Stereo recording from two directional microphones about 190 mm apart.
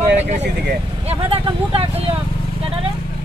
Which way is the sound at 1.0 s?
30° right (ahead or behind).